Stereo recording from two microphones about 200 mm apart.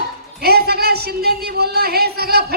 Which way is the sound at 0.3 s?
50° right (ahead or behind).